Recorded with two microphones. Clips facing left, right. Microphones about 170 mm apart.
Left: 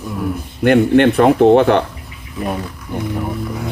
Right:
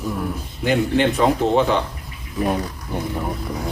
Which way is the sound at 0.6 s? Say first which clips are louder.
Left 7 dB; 60° left (ahead or behind).